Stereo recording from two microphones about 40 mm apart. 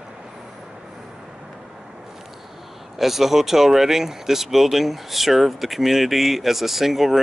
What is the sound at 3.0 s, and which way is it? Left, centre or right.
Speech, centre.